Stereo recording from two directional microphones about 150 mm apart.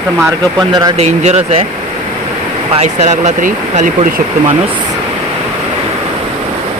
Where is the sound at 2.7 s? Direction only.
50° right (ahead or behind).